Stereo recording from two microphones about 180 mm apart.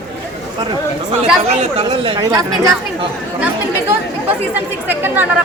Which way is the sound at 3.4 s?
10° right (ahead or behind).